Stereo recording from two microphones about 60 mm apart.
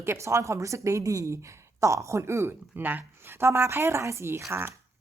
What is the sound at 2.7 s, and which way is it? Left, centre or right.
Speech, right.